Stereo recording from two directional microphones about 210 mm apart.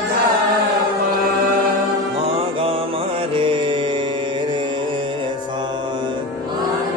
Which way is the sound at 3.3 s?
25° right (ahead or behind).